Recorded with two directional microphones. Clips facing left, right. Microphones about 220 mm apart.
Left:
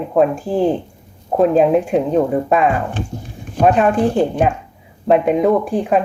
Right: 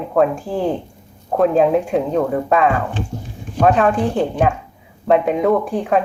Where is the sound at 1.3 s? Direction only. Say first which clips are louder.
Left 2 dB; 15° left (ahead or behind).